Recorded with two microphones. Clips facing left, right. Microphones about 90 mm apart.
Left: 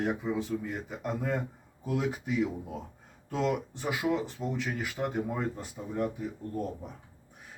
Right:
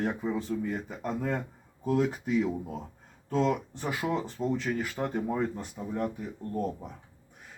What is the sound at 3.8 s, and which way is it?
Speech, 5° left (ahead or behind).